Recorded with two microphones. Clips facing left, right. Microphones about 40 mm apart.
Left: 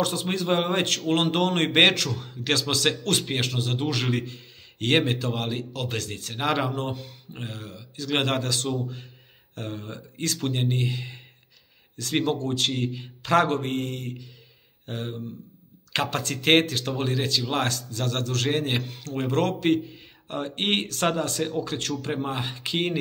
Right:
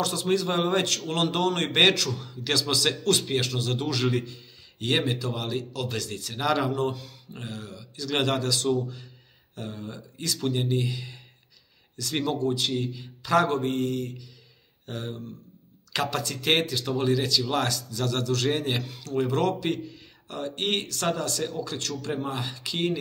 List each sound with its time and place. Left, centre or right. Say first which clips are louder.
0.0 s a man's voice: right 1 dB; left
12.4 s a man's voice: even; left